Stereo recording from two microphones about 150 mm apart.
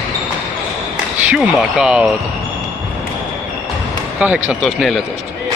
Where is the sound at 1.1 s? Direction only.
10° right (ahead or behind).